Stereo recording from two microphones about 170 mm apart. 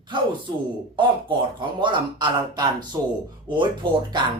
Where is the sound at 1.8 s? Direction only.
25° right (ahead or behind).